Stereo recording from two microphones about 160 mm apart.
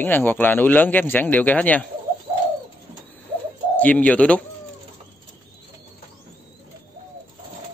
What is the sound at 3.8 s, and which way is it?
Speech, 10° left (ahead or behind).